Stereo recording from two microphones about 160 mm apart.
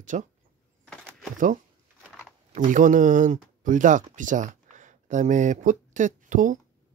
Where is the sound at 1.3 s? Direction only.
55° right (ahead or behind).